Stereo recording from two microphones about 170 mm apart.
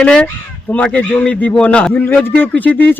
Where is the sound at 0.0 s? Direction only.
5° left (ahead or behind).